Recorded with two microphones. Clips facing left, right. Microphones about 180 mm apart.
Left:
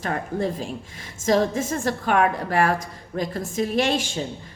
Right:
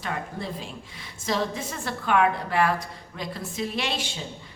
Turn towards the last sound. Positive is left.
turn(degrees=45)  # may be behind; listen again after turning